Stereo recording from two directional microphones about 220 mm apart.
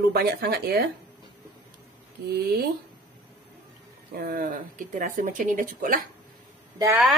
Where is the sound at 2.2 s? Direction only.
45° right (ahead or behind).